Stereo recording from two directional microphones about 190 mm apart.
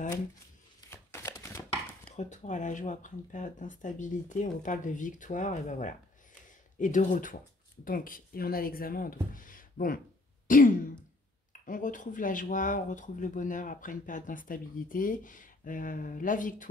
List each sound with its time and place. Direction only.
0.7 s chopping: 15° left (ahead or behind)
2.1 s speech: 40° left (ahead or behind)